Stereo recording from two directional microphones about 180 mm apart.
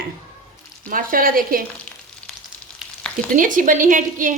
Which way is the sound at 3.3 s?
45° right (ahead or behind).